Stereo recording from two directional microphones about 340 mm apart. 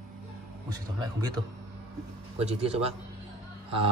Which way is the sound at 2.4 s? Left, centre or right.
Centre.